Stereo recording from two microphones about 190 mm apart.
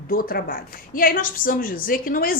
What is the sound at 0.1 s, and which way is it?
A woman's voice, 50° left (ahead or behind).